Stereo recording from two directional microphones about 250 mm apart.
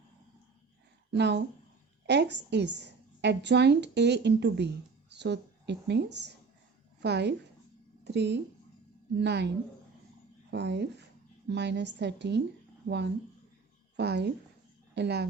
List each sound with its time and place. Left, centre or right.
1.1 s a woman's voice: right
10.5 s a woman's voice: right
13.9 s a woman's voice: right